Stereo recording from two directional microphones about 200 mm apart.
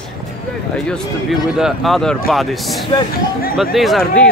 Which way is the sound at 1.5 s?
Centre (ahead or behind).